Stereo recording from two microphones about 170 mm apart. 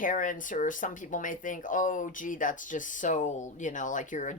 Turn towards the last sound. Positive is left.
turn(degrees=50)  # may be behind; listen again after turning